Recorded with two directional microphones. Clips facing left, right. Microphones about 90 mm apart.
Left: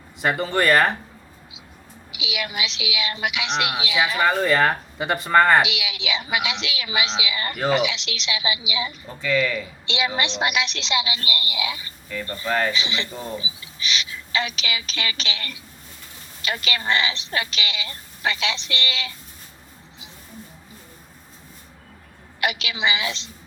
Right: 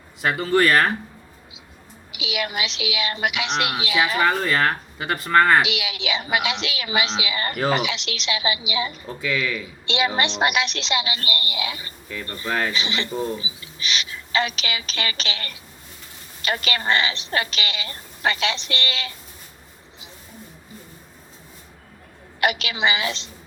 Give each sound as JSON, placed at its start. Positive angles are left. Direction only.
{"t": 0.2, "sound": "speech", "side_deg": 0}
{"t": 2.1, "sound": "a woman's voice", "side_deg": -50}
{"t": 4.2, "sound": "speech", "side_deg": 0}
{"t": 5.6, "sound": "a woman's voice", "side_deg": -45}
{"t": 9.0, "sound": "speech", "side_deg": -5}
{"t": 9.8, "sound": "a woman's voice", "side_deg": -45}
{"t": 12.5, "sound": "speech", "side_deg": 0}
{"t": 12.7, "sound": "a woman's voice", "side_deg": -45}
{"t": 22.4, "sound": "a woman's voice", "side_deg": -45}